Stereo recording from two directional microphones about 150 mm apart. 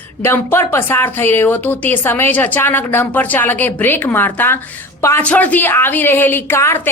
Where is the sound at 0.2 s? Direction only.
15° left (ahead or behind).